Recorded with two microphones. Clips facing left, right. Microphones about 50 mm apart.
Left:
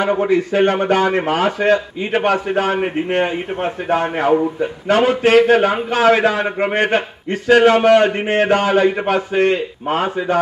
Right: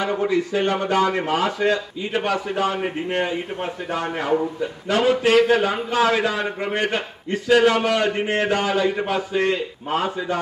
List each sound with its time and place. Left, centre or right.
0.0 s speech: left